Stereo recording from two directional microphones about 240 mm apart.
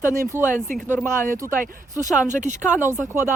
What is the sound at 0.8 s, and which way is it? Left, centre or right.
Speech, centre.